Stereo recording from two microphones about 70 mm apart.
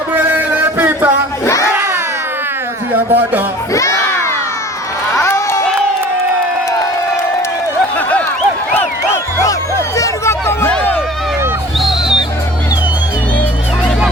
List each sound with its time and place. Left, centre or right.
0.1 s music: right
1.7 s a sound: right
2.9 s speech: right
3.7 s music: left
10.0 s hubbub: left
11.8 s music: centre